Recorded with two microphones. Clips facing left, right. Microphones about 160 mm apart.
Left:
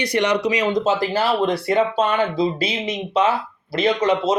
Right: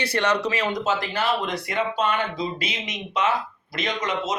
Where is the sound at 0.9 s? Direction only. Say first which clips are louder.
Left 5 dB; 35° left (ahead or behind).